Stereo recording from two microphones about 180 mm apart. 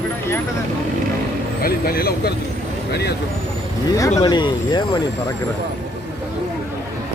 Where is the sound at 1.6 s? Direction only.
55° left (ahead or behind).